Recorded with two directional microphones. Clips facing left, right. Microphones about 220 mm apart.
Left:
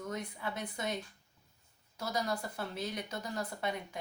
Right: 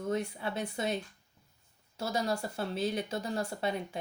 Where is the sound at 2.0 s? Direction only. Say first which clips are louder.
Right 3 dB; 25° right (ahead or behind).